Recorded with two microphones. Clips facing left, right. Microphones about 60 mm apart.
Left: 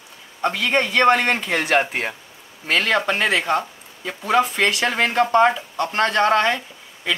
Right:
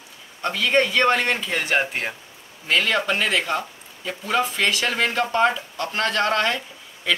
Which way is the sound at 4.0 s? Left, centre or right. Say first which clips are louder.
Left 4 dB; left.